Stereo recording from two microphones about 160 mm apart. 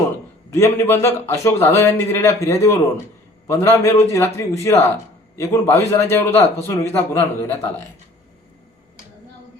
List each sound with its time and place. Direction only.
0.5 s a man's voice: 15° left (ahead or behind)